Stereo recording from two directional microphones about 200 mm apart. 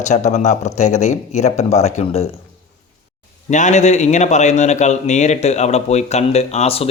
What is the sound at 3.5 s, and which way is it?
Speech, 35° left (ahead or behind).